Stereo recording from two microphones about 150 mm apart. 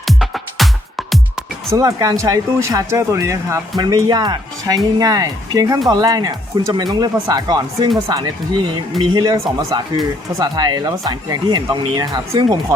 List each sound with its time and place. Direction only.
0.1 s music: centre (ahead or behind)
1.7 s speech: 25° right (ahead or behind)